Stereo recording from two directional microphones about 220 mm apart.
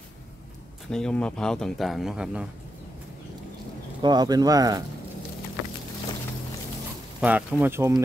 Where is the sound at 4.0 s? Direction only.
20° right (ahead or behind).